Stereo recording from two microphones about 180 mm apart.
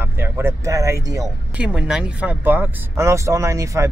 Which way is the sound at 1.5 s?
5° right (ahead or behind).